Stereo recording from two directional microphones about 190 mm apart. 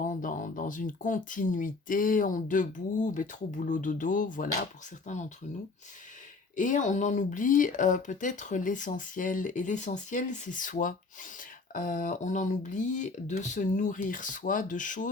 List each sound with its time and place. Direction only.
0.0 s speech: 45° left (ahead or behind)
6.6 s speech: 40° left (ahead or behind)